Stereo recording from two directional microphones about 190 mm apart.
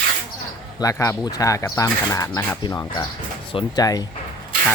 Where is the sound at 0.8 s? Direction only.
15° left (ahead or behind).